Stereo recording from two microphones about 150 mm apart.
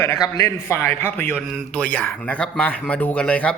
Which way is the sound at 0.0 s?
20° left (ahead or behind).